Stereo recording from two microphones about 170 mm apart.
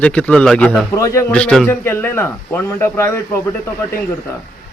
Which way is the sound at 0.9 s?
15° left (ahead or behind).